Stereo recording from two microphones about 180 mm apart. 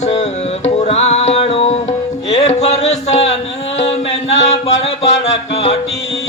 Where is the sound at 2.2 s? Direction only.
35° left (ahead or behind).